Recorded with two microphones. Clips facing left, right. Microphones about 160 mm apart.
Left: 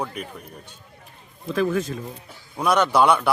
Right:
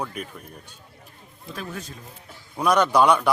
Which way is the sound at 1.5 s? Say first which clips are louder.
Left 13 dB; 90° left.